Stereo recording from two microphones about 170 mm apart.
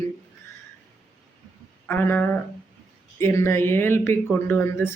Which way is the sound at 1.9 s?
10° left (ahead or behind).